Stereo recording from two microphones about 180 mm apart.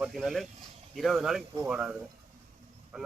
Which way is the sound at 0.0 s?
5° right (ahead or behind).